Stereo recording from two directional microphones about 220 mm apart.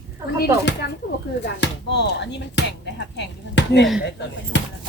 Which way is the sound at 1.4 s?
50° left (ahead or behind).